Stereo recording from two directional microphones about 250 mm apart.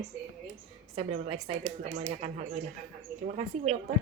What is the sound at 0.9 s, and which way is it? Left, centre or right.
A woman's voice, right.